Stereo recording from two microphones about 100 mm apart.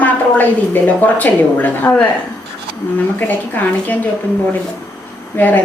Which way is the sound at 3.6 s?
15° left (ahead or behind).